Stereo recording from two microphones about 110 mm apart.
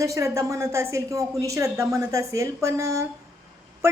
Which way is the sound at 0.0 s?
30° right (ahead or behind).